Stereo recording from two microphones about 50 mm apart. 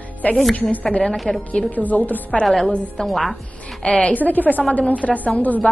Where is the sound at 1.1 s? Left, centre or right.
Centre.